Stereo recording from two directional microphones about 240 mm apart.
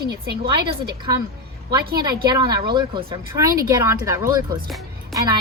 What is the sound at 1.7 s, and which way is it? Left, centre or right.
Speech, centre.